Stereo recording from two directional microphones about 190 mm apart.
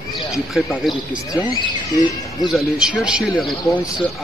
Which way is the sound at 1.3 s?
25° left (ahead or behind).